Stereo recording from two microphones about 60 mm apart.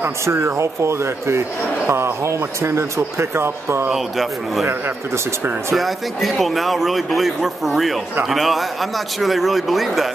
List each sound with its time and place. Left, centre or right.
0.2 s speech: right
3.9 s a man's voice: centre
4.6 s speech: right
5.8 s a man's voice: centre